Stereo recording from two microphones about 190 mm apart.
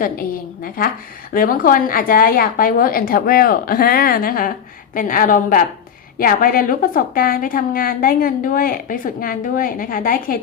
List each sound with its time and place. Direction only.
0.0 s a woman's voice: 50° left (ahead or behind)